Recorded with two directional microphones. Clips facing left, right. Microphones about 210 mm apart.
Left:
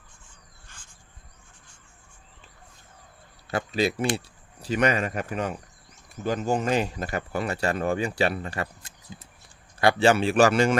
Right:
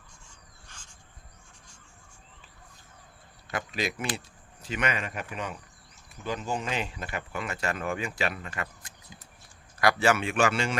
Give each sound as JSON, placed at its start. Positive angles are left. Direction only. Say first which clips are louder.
{"t": 3.4, "sound": "speech", "louder": "left 7 dB", "side_deg": 30}